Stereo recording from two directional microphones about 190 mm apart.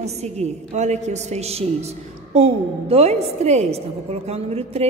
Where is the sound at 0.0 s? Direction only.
35° right (ahead or behind).